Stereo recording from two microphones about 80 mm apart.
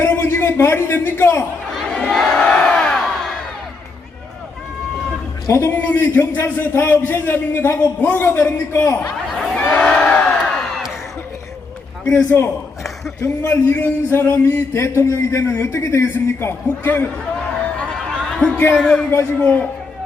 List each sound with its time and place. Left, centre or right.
0.0 s a man's voice: left
1.9 s crowd: centre
5.5 s speech: left
5.7 s a man's voice: left
9.2 s a sound: centre
9.6 s crowd: centre
12.1 s a man's voice: left
13.2 s speech: left
13.8 s a man's voice: left
17.9 s a sound: centre
18.7 s music: centre